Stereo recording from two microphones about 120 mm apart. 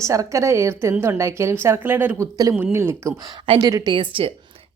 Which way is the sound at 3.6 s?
35° right (ahead or behind).